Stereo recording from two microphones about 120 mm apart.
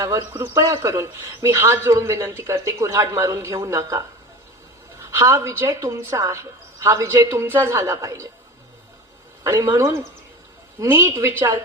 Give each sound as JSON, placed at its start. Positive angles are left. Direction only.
{"t": 0.0, "sound": "speech", "side_deg": -25}
{"t": 9.4, "sound": "speech", "side_deg": -25}